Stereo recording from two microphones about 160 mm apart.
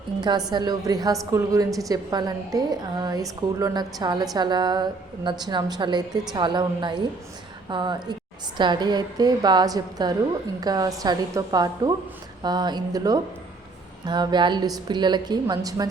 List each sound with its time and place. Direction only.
0.2 s a woman's voice: 25° right (ahead or behind)